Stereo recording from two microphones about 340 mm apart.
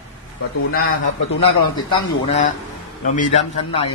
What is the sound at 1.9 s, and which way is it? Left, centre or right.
A man's voice, centre.